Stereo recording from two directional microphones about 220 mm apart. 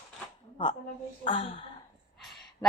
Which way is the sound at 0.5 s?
20° left (ahead or behind).